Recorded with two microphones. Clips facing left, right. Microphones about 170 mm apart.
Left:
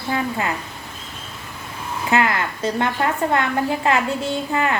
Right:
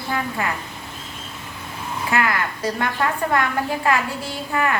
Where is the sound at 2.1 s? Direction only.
25° left (ahead or behind).